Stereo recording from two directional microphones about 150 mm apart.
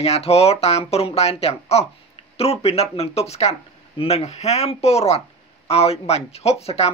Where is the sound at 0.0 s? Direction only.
45° left (ahead or behind).